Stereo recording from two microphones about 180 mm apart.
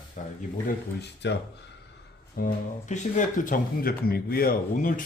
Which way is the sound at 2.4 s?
55° left (ahead or behind).